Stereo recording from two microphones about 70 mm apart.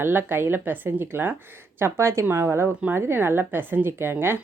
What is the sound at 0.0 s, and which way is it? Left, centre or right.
A woman's voice, right.